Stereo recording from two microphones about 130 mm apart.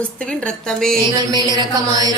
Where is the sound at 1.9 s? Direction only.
30° right (ahead or behind).